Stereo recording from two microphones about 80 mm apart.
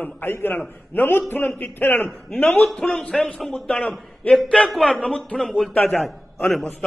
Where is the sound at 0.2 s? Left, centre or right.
Left.